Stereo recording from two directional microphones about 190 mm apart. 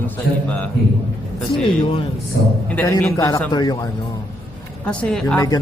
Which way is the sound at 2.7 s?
10° left (ahead or behind).